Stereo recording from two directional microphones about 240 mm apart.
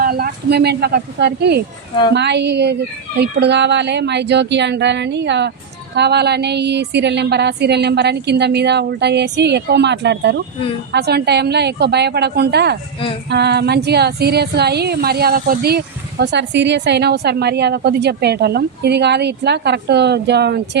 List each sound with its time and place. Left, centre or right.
0.0 s speech: right